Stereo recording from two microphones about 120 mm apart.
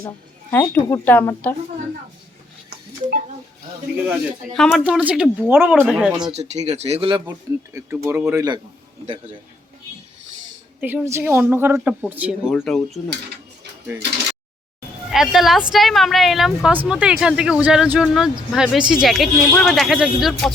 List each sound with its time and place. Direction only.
0.5 s speech: 20° left (ahead or behind)
3.9 s speech: 15° right (ahead or behind)
4.5 s speech: 5° left (ahead or behind)
5.0 s speech: 10° right (ahead or behind)
6.3 s speech: 65° right (ahead or behind)
7.3 s a man's voice: 20° right (ahead or behind)
10.8 s speech: 15° right (ahead or behind)
12.5 s speech: centre (ahead or behind)
15.1 s speech: 5° right (ahead or behind)